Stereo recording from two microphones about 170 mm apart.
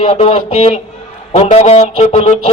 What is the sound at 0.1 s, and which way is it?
A man's voice, 35° left (ahead or behind).